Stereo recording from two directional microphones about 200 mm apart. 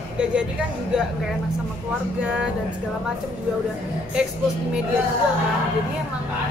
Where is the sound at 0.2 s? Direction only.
5° right (ahead or behind).